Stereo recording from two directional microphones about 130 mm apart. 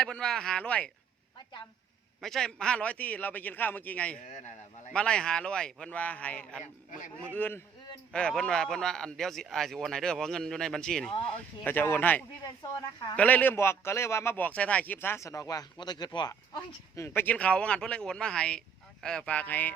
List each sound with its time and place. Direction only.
0.0 s a man's voice: 5° left (ahead or behind)
2.2 s a man's voice: 5° left (ahead or behind)
11.6 s a man's voice: 15° left (ahead or behind)